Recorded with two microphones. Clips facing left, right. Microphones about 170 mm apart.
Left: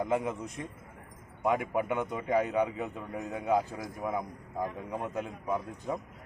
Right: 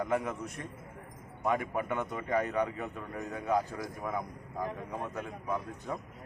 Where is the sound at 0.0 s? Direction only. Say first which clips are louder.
Left 2 dB; 20° left (ahead or behind).